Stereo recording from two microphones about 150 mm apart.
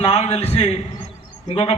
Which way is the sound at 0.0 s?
45° left (ahead or behind).